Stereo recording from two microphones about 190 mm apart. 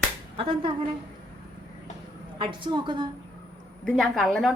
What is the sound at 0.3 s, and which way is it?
Speech, 25° right (ahead or behind).